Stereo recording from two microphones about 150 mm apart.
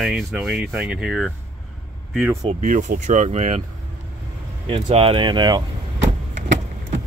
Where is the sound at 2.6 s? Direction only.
55° right (ahead or behind).